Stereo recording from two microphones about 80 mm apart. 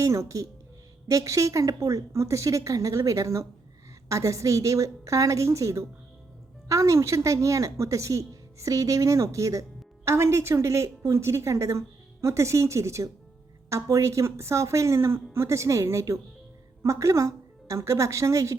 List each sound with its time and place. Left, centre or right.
0.0 s a woman's voice: right